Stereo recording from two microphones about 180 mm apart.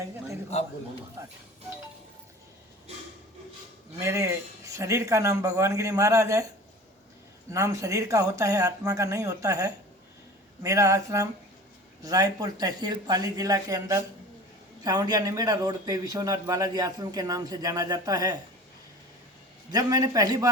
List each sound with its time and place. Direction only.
1.2 s speech: 15° right (ahead or behind)
4.0 s speech: 15° right (ahead or behind)
7.5 s a man's voice: 15° right (ahead or behind)
19.7 s a man's voice: 20° right (ahead or behind)